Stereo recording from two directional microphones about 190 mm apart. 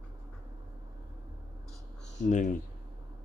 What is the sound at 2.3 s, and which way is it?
Speech, 40° left (ahead or behind).